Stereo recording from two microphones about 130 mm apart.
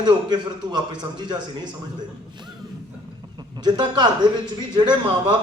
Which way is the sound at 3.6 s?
35° right (ahead or behind).